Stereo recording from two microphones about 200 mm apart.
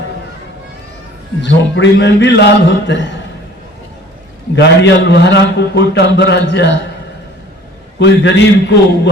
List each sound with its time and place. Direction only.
1.4 s a man's voice: 65° left (ahead or behind)
4.5 s a man's voice: 55° left (ahead or behind)
7.9 s a man's voice: 60° left (ahead or behind)